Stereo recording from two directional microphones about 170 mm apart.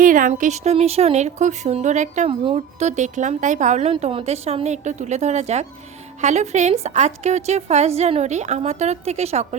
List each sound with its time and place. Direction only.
0.0 s a woman's voice: 50° right (ahead or behind)